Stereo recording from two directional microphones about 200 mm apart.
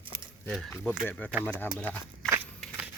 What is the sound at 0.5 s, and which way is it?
Speech, centre (ahead or behind).